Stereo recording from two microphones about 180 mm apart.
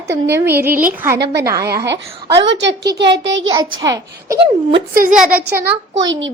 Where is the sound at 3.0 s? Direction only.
80° right.